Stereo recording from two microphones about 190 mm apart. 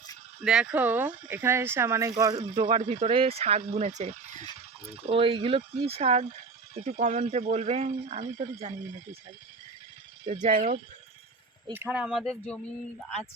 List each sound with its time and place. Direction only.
0.4 s speech: 5° right (ahead or behind); by 8.4 s 40° right (ahead or behind)
10.4 s speech: 45° right (ahead or behind)
11.7 s speech: 10° right (ahead or behind); by 12.7 s 5° left (ahead or behind)